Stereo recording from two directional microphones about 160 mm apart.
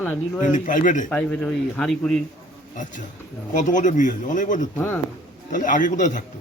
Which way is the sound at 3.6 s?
50° left (ahead or behind).